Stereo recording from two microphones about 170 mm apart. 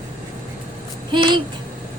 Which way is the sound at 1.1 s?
25° right (ahead or behind).